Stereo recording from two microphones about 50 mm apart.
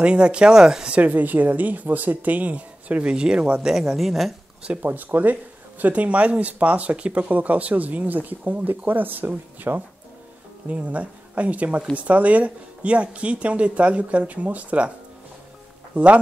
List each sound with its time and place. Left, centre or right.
0.0 s speech: right
0.9 s speech: right
3.6 s speech: centre
4.8 s speech: right
15.9 s speech: right